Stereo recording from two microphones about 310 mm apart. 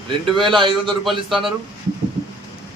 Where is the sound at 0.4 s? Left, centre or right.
Centre.